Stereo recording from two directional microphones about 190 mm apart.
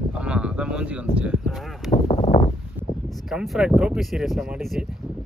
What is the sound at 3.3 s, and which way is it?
Speech, 5° right (ahead or behind).